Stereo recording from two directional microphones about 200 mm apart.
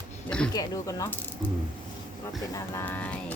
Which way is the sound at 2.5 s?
10° left (ahead or behind).